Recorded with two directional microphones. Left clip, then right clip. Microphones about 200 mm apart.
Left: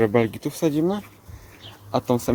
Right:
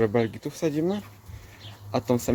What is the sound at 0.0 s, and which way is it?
Speech, 25° left (ahead or behind).